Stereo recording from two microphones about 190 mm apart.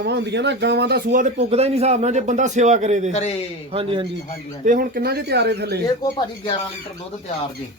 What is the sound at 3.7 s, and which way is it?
Speech, 30° right (ahead or behind).